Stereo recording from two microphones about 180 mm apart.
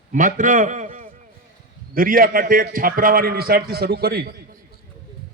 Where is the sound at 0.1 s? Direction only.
45° right (ahead or behind).